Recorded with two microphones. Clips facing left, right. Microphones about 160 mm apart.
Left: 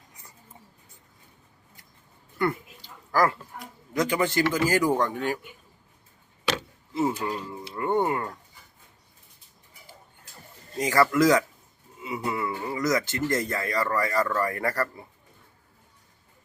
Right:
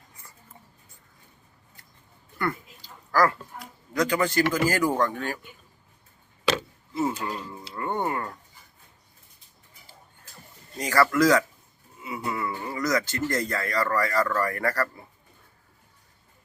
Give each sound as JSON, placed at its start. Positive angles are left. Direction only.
{"t": 2.4, "sound": "a sound", "side_deg": 20}
{"t": 4.7, "sound": "speech", "side_deg": 20}
{"t": 7.0, "sound": "speech", "side_deg": 20}
{"t": 10.8, "sound": "speech", "side_deg": 20}